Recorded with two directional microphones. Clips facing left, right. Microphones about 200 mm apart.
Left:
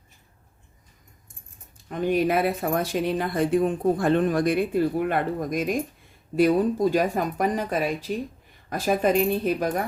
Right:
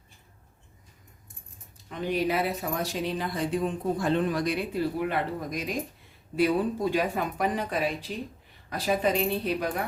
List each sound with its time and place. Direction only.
1.9 s speech: 50° left (ahead or behind)